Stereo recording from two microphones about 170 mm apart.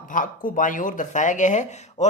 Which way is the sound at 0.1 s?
50° left (ahead or behind).